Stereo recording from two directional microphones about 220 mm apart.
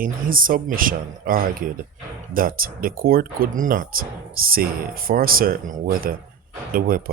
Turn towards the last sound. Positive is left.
turn(degrees=-40)  # may be behind; listen again after turning